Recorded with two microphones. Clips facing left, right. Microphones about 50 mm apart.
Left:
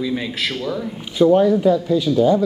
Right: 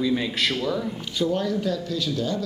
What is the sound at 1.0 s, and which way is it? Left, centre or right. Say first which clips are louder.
Speech: left 14 dB; centre.